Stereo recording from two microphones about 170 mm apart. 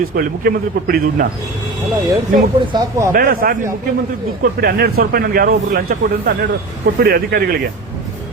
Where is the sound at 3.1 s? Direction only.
55° right (ahead or behind).